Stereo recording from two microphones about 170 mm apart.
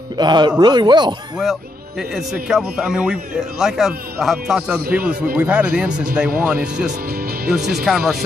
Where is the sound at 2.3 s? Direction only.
5° right (ahead or behind).